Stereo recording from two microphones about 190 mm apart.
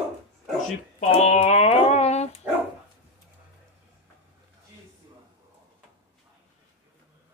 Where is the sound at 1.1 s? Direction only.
35° left (ahead or behind).